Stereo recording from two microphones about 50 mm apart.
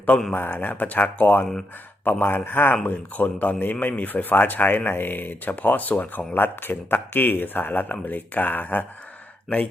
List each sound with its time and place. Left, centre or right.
0.3 s speech: left